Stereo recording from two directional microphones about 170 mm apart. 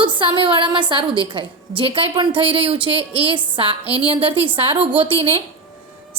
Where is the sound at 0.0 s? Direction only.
30° right (ahead or behind).